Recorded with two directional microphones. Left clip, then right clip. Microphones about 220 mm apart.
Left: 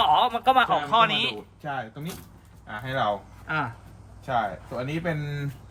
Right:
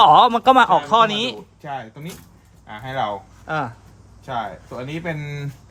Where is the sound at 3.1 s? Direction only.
15° right (ahead or behind).